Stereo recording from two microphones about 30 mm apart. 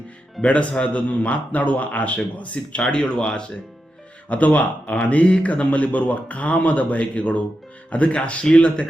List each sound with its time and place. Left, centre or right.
0.4 s a man's voice: left
2.8 s speech: left
4.3 s a man's voice: left